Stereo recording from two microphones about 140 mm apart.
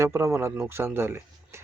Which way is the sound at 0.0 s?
20° right (ahead or behind).